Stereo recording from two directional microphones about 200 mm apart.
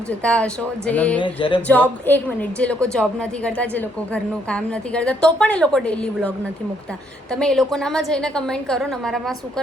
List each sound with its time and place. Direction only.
0.2 s a woman's voice: 5° left (ahead or behind)
1.2 s a sound: 25° left (ahead or behind)
1.6 s a woman's voice: 10° left (ahead or behind)